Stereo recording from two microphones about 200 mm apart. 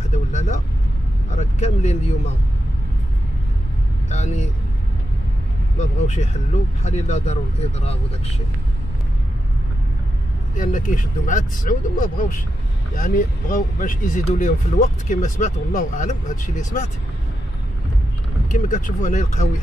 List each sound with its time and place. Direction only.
0.1 s speech: 35° left (ahead or behind)
4.1 s speech: 35° left (ahead or behind)
5.8 s speech: 35° left (ahead or behind)
10.5 s speech: 40° left (ahead or behind)
18.5 s speech: 40° left (ahead or behind)